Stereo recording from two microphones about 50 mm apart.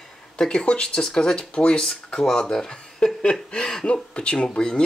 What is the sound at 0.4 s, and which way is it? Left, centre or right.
Speech, centre.